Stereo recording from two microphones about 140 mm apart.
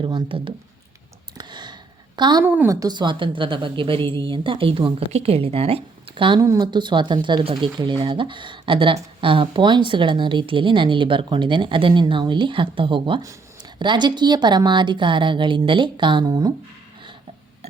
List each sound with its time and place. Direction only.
0.0 s speech: 35° right (ahead or behind)
1.4 s a sound: 30° right (ahead or behind)
2.1 s a woman's voice: 30° right (ahead or behind)
2.4 s speech: 15° right (ahead or behind)
2.8 s speech: 35° right (ahead or behind)
6.4 s speech: 25° right (ahead or behind)